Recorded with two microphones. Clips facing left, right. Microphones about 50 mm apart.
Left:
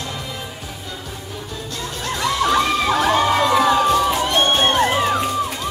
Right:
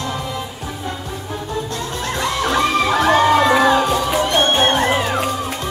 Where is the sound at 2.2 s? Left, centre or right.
Right.